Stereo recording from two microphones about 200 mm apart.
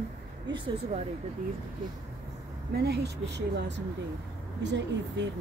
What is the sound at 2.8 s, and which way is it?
Speech, 55° right (ahead or behind).